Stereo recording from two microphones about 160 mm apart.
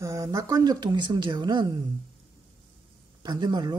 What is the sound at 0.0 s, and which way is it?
Speech, 20° right (ahead or behind).